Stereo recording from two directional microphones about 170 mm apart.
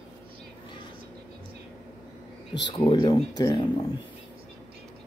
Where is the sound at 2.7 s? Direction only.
25° left (ahead or behind).